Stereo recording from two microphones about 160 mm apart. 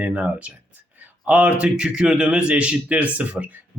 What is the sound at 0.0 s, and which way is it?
A man's voice, 10° right (ahead or behind).